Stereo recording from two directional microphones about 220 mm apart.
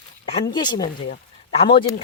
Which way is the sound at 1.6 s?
20° left (ahead or behind).